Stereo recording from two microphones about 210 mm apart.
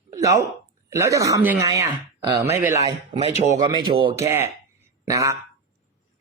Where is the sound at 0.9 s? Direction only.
15° right (ahead or behind).